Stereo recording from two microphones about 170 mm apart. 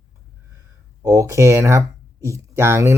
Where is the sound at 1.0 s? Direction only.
20° right (ahead or behind).